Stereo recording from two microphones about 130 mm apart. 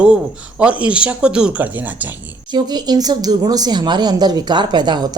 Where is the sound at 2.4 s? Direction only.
35° right (ahead or behind).